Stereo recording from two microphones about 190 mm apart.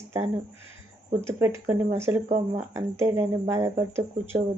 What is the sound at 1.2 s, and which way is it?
A woman's voice, 15° right (ahead or behind).